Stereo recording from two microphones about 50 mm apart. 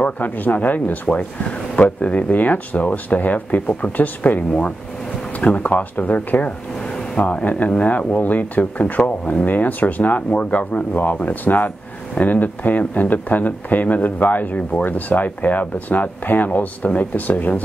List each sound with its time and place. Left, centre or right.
0.0 s speech: left